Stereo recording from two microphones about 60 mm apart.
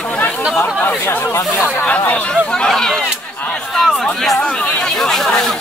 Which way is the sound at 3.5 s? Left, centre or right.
Centre.